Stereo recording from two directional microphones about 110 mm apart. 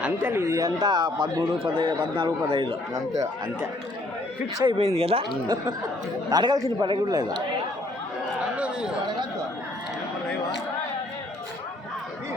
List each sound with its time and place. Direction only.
0.0 s speech: 20° right (ahead or behind); by 1.5 s 35° right (ahead or behind)
1.5 s speech: 50° right (ahead or behind)
4.5 s speech: 40° right (ahead or behind)
4.8 s speech: 65° right (ahead or behind)
6.3 s speech: 40° right (ahead or behind)
8.4 s a sound: 10° right (ahead or behind)